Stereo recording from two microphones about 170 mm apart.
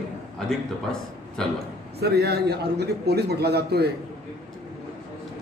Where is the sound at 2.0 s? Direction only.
70° right (ahead or behind).